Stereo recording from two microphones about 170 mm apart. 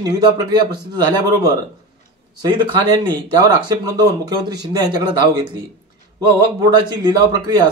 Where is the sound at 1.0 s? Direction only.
20° right (ahead or behind).